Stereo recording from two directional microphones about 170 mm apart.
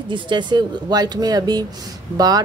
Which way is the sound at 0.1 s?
25° right (ahead or behind).